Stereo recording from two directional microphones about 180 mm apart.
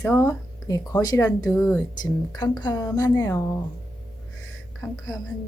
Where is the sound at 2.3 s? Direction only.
25° left (ahead or behind).